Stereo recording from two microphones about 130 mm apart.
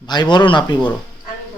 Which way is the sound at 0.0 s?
35° left (ahead or behind).